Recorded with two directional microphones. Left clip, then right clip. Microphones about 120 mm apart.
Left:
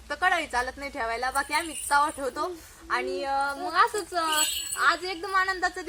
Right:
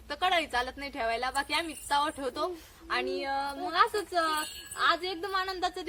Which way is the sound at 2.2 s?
75° right (ahead or behind).